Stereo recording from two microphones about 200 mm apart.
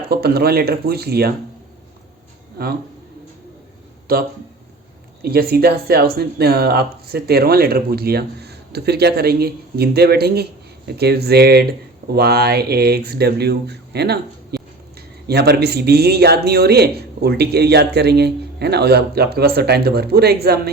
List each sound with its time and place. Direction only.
0.1 s speech: 50° right (ahead or behind)
4.1 s speech: 50° right (ahead or behind)
14.5 s a sound: 55° right (ahead or behind)
15.3 s speech: 55° right (ahead or behind)